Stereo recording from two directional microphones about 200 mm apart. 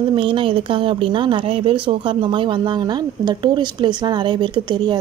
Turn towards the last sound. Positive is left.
turn(degrees=-20)  # may be behind; listen again after turning